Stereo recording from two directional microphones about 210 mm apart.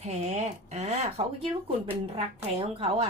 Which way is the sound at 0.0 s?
30° right (ahead or behind).